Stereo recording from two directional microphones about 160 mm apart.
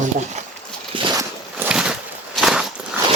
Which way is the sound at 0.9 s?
30° right (ahead or behind).